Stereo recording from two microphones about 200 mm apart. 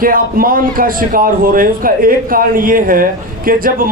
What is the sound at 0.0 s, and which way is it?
A man's voice, 45° right (ahead or behind).